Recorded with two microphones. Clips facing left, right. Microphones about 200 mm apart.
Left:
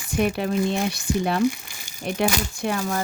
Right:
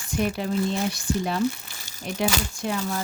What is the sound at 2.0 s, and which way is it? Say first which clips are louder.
Speech: left 3 dB; 60° left (ahead or behind).